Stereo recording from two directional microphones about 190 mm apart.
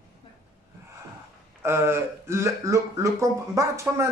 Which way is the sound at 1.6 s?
10° right (ahead or behind).